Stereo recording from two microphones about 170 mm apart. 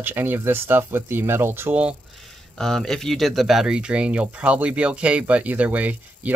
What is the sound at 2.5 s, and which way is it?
Speech, 5° left (ahead or behind).